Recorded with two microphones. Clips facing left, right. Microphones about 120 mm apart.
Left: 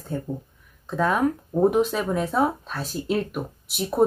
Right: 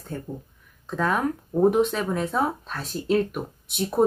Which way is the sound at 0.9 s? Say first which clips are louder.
Left 2 dB; centre (ahead or behind).